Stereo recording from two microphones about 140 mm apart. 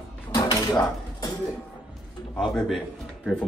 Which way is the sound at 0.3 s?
30° left (ahead or behind).